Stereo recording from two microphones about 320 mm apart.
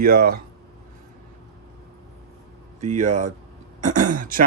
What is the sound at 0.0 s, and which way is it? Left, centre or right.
Speech, right.